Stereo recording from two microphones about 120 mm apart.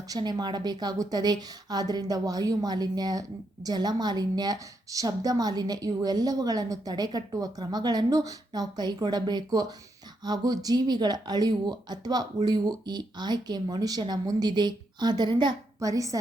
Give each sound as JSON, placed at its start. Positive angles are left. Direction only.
{"t": 0.1, "sound": "a woman's voice", "side_deg": -35}
{"t": 15.8, "sound": "speech", "side_deg": -30}